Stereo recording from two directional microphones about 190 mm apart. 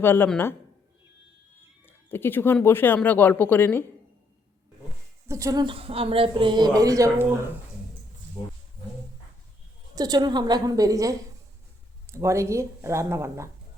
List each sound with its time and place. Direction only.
0.0 s speech: 10° left (ahead or behind)
1.9 s speech: 10° left (ahead or behind)
5.3 s a woman's voice: 15° right (ahead or behind)
8.4 s speech: 20° left (ahead or behind)
9.9 s a woman's voice: 20° right (ahead or behind)